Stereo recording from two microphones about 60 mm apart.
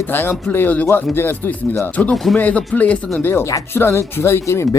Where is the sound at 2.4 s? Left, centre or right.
Left.